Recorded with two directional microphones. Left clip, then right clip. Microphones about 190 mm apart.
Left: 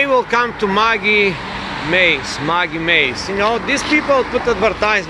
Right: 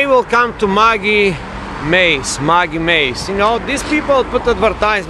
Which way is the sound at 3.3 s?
10° right (ahead or behind).